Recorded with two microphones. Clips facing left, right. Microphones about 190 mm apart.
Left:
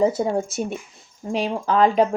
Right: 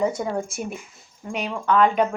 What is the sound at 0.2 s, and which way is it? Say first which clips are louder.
Speech: left 4 dB; 25° left (ahead or behind).